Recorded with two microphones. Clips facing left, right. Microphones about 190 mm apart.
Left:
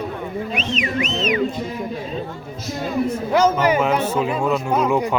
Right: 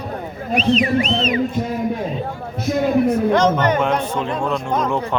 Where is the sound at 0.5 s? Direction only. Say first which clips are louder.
Right 10 dB; 35° right (ahead or behind).